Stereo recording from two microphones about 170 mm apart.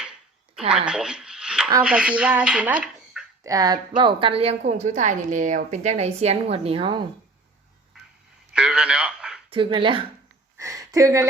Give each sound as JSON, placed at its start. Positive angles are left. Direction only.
{"t": 0.9, "sound": "a sound", "side_deg": -5}
{"t": 1.8, "sound": "speech", "side_deg": -5}
{"t": 3.4, "sound": "a woman's voice", "side_deg": -20}
{"t": 8.5, "sound": "radio", "side_deg": -5}
{"t": 9.5, "sound": "a woman's voice", "side_deg": -30}
{"t": 10.6, "sound": "speech", "side_deg": -20}